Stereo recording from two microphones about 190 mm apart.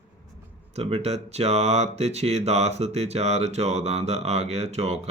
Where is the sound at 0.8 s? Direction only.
30° right (ahead or behind).